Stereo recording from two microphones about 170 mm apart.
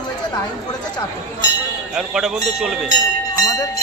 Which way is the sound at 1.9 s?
5° right (ahead or behind).